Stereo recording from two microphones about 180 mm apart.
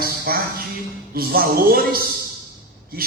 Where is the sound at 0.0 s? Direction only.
55° right (ahead or behind).